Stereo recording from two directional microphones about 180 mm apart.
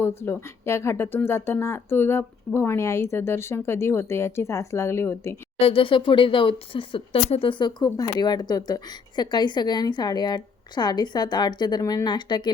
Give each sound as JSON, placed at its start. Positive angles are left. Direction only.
{"t": 0.0, "sound": "speech", "side_deg": 15}
{"t": 5.5, "sound": "speech", "side_deg": 30}